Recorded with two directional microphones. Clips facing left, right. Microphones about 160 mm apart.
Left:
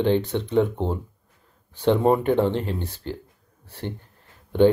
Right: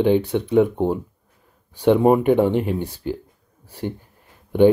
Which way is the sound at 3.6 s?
10° right (ahead or behind).